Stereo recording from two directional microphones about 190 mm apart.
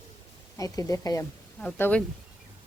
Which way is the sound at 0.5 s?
20° left (ahead or behind).